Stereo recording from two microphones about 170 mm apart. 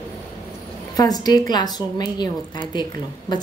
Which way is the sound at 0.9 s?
25° left (ahead or behind).